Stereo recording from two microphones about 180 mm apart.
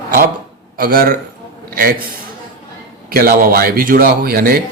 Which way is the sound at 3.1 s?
50° right (ahead or behind).